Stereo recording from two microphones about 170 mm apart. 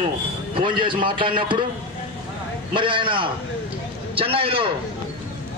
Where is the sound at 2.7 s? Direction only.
30° right (ahead or behind).